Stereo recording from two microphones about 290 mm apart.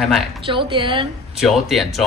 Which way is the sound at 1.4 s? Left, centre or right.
Centre.